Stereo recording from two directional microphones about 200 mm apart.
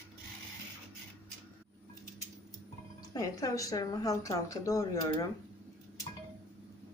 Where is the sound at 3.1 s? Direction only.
15° left (ahead or behind).